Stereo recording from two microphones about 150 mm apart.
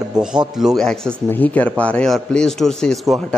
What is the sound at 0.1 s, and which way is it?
A man's voice, 5° right (ahead or behind).